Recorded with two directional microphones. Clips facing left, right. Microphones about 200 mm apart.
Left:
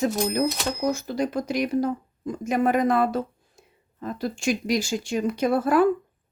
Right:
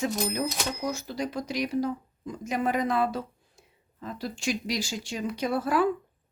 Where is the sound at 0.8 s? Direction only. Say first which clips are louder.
Left 8 dB; 50° left (ahead or behind).